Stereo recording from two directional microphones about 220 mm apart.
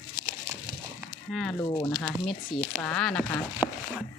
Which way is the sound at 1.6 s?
15° left (ahead or behind).